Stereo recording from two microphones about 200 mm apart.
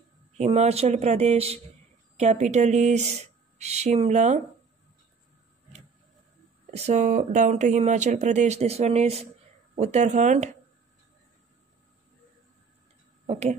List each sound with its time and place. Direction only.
0.4 s speech: 35° right (ahead or behind)
6.7 s speech: 35° right (ahead or behind)
13.3 s speech: 35° right (ahead or behind)